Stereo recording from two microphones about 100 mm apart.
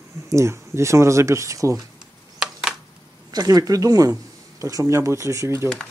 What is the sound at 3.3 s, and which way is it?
Speech, 40° right (ahead or behind).